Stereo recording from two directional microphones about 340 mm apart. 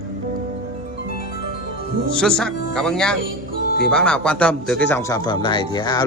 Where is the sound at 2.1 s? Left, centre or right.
Centre.